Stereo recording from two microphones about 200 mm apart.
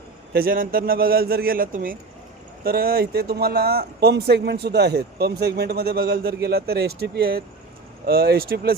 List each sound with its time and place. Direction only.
0.3 s speech: 45° right (ahead or behind)